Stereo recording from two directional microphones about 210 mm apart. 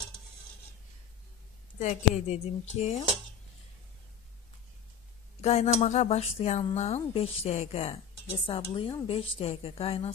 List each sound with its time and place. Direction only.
1.8 s speech: 35° left (ahead or behind)
5.4 s a woman's voice: 30° left (ahead or behind)